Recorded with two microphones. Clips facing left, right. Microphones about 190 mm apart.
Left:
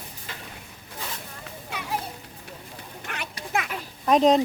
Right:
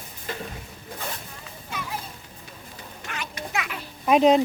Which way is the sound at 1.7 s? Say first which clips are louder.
Left 1 dB; 65° left (ahead or behind).